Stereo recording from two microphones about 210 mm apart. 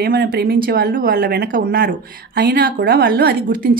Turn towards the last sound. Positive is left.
turn(degrees=-45)  # may be behind; listen again after turning